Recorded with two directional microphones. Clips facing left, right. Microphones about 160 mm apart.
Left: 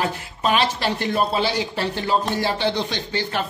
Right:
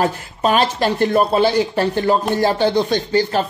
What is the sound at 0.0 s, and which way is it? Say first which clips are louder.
Speech: right 5 dB; 45° right (ahead or behind).